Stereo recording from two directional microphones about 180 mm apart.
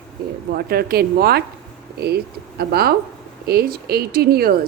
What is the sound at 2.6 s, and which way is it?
A woman's voice, 60° right (ahead or behind).